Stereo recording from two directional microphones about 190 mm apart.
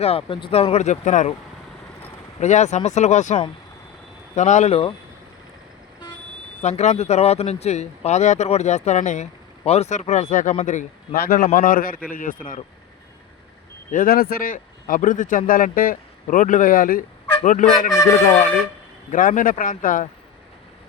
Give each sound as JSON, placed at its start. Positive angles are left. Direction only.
{"t": 0.0, "sound": "speech", "side_deg": 30}
{"t": 2.4, "sound": "speech", "side_deg": 40}
{"t": 4.4, "sound": "speech", "side_deg": 40}
{"t": 6.6, "sound": "speech", "side_deg": 35}
{"t": 13.9, "sound": "speech", "side_deg": 50}
{"t": 17.9, "sound": "speech", "side_deg": 15}
{"t": 19.1, "sound": "speech", "side_deg": 45}